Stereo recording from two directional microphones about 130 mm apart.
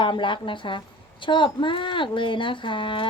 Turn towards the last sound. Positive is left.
turn(degrees=40)  # may be behind; listen again after turning